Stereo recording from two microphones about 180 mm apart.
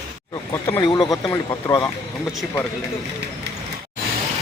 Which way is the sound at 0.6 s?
20° left (ahead or behind).